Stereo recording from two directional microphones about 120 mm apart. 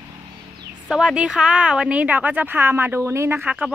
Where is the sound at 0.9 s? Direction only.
5° right (ahead or behind).